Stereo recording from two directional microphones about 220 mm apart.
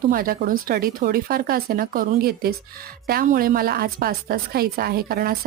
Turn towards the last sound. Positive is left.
turn(degrees=-45)  # may be behind; listen again after turning